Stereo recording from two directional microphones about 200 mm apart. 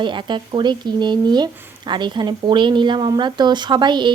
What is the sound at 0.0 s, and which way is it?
Speech, 25° right (ahead or behind).